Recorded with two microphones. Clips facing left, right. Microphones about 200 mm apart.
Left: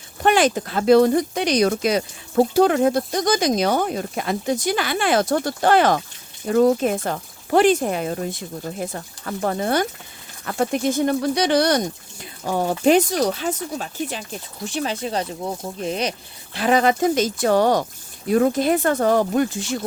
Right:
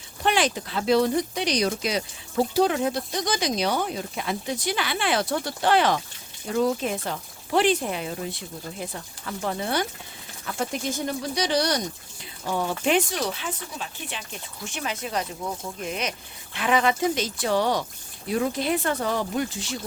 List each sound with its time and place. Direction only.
0.2 s speech: 45° left (ahead or behind)